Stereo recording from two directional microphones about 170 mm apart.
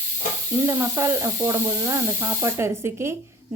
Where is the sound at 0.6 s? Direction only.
15° right (ahead or behind).